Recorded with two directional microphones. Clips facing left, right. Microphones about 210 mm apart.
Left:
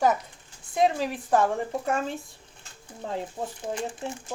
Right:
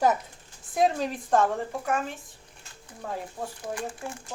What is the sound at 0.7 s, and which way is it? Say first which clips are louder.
Speech: left 1 dB; centre (ahead or behind).